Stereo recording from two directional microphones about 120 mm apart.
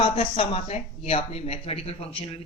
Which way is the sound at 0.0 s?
50° left (ahead or behind).